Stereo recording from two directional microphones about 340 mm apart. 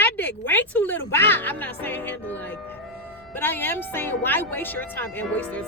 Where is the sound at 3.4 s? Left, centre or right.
Centre.